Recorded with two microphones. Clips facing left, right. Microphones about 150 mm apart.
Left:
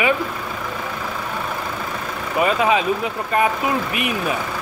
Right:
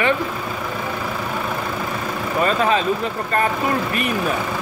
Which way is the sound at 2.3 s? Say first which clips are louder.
Left 1 dB; 10° left (ahead or behind).